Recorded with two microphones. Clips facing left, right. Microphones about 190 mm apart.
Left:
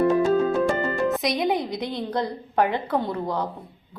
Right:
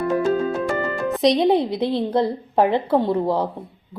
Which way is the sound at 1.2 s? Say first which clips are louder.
Right 7 dB; 30° right (ahead or behind).